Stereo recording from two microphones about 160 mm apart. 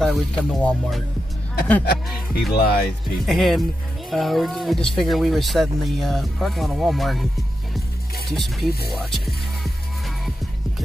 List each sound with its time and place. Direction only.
0.0 s speech: centre (ahead or behind)
2.3 s speech: 75° left (ahead or behind)
3.3 s speech: centre (ahead or behind)
8.3 s speech: centre (ahead or behind)